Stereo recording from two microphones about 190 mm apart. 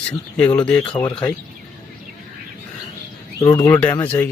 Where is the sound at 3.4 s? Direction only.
15° left (ahead or behind).